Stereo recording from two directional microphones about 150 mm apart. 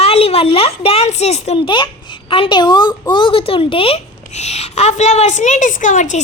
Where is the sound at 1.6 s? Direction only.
30° left (ahead or behind).